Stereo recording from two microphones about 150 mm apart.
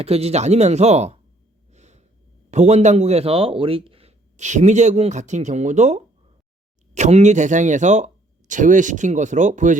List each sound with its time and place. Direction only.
0.0 s speech: 45° right (ahead or behind)
1.7 s snort: 50° right (ahead or behind)
2.5 s speech: 50° right (ahead or behind)